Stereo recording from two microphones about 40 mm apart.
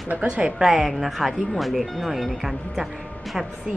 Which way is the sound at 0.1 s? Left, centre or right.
Right.